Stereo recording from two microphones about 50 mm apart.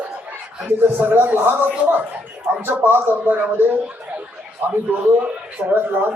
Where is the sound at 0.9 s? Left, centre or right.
Right.